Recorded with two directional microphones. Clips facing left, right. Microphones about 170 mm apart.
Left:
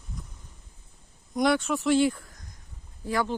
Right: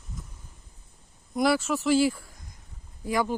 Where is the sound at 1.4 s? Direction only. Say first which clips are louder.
Even; 5° right (ahead or behind).